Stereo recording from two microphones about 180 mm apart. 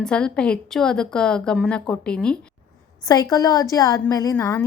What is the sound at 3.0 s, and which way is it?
A woman's voice, 20° left (ahead or behind).